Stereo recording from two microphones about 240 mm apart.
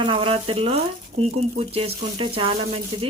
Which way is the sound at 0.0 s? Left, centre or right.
Right.